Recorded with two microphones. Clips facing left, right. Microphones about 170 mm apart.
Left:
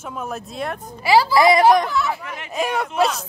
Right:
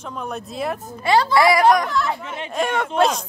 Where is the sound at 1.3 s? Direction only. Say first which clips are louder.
Left 1 dB; 25° left (ahead or behind).